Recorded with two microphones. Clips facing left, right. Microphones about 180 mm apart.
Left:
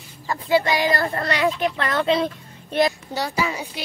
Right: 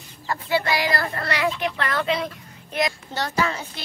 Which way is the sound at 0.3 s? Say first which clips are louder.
Left 3 dB; 20° left (ahead or behind).